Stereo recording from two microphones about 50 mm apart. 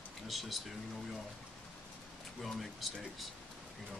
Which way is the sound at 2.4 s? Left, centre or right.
Centre.